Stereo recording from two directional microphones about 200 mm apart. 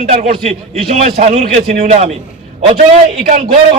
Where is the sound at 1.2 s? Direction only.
30° right (ahead or behind).